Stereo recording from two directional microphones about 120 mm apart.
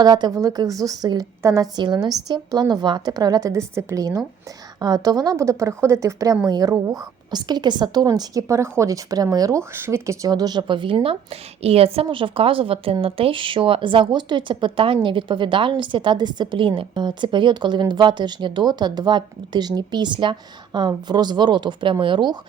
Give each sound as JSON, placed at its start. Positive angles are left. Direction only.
{"t": 0.0, "sound": "a woman's voice", "side_deg": -35}